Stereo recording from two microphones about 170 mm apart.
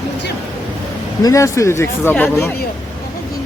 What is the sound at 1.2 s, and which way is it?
Speech, 20° left (ahead or behind).